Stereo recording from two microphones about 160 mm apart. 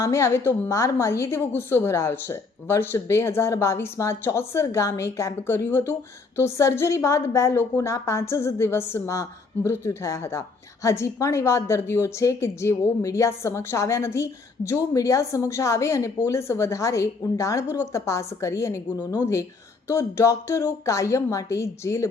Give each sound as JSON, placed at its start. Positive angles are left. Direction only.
{"t": 0.0, "sound": "a woman's voice", "side_deg": 15}